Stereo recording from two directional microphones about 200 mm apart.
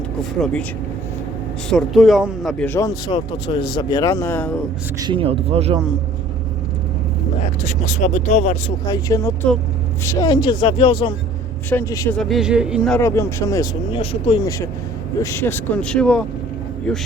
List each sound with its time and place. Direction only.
0.3 s speech: centre (ahead or behind)
1.7 s speech: centre (ahead or behind)
4.9 s speech: 25° right (ahead or behind)
7.6 s speech: 40° left (ahead or behind)
8.9 s speech: 15° left (ahead or behind)
11.7 s speech: 15° left (ahead or behind)
12.1 s speech: centre (ahead or behind)
13.0 s speech: 15° left (ahead or behind)